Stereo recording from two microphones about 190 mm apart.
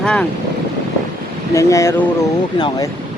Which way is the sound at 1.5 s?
15° left (ahead or behind).